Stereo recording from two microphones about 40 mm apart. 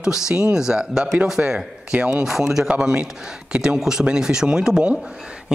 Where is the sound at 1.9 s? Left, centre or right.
Right.